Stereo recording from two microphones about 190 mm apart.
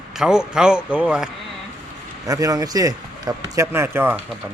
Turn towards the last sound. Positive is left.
turn(degrees=-10)  # may be behind; listen again after turning